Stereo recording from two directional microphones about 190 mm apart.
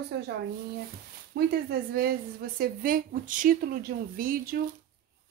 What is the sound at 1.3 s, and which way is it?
Speech, 60° right (ahead or behind).